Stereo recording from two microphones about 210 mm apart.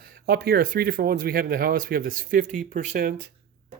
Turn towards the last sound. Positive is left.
turn(degrees=-45)  # may be behind; listen again after turning